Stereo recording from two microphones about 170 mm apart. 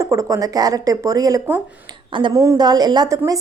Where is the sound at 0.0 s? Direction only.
20° right (ahead or behind).